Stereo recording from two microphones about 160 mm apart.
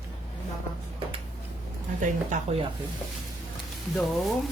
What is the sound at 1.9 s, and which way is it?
Speech, 50° right (ahead or behind).